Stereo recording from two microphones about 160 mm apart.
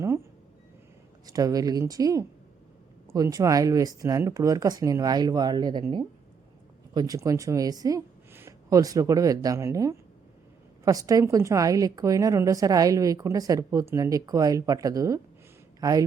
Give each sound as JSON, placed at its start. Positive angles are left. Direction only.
{"t": 1.3, "sound": "a woman's voice", "side_deg": -20}